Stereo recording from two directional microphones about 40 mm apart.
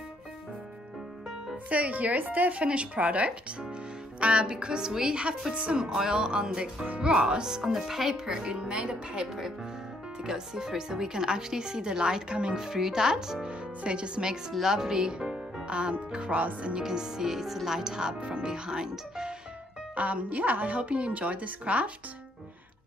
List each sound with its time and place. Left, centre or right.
1.7 s a woman's voice: right
5.8 s speech: centre
8.3 s speech: right
12.5 s speech: centre
13.5 s speech: right
16.8 s speech: centre
20.0 s a woman's voice: right